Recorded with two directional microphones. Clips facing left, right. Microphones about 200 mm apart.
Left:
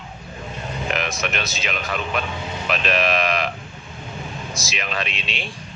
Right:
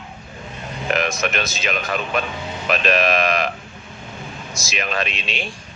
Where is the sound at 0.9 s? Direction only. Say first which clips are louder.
Right 6 dB; 45° right (ahead or behind).